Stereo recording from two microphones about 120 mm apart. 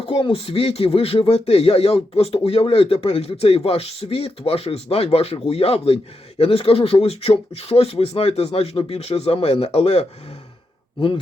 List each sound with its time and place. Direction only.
0.0 s speech: 50° left (ahead or behind)